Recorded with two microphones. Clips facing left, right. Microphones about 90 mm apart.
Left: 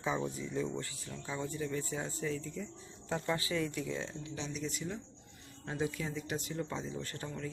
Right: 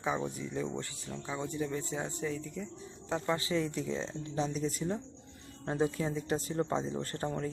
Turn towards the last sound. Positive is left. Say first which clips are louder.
# right 6 dB
turn(degrees=-40)  # may be behind; listen again after turning